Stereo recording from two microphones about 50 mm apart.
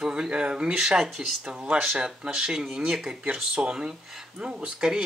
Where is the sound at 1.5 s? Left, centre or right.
Centre.